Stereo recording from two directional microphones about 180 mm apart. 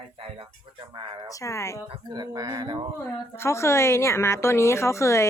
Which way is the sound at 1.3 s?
15° left (ahead or behind).